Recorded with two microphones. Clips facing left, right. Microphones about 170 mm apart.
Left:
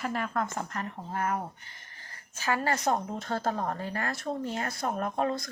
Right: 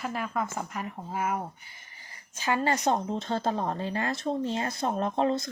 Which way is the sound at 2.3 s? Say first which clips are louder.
Right 2 dB; 20° right (ahead or behind).